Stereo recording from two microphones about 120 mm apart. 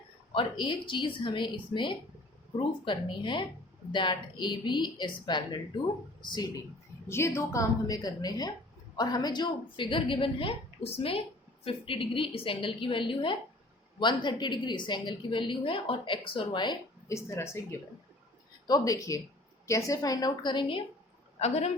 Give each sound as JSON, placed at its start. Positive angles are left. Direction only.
{"t": 0.3, "sound": "a woman's voice", "side_deg": 40}
{"t": 7.1, "sound": "a woman's voice", "side_deg": 25}
{"t": 17.1, "sound": "a woman's voice", "side_deg": 25}
{"t": 21.3, "sound": "a woman's voice", "side_deg": 65}